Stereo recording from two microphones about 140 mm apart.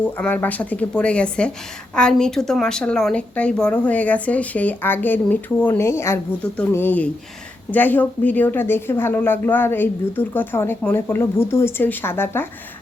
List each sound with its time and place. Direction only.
0.0 s speech: 15° left (ahead or behind)